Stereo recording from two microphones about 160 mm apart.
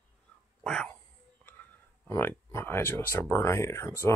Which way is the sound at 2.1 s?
15° left (ahead or behind).